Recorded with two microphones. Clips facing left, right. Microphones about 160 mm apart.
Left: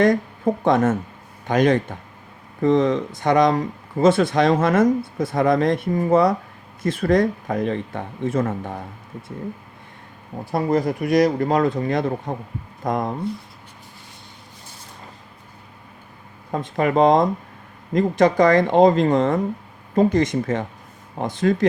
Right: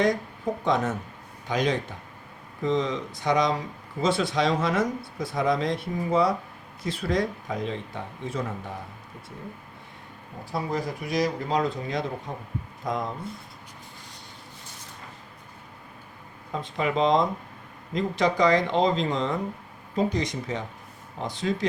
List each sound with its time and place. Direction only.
0.6 s speech: 50° left (ahead or behind)
10.5 s speech: 55° left (ahead or behind)
16.5 s speech: 50° left (ahead or behind)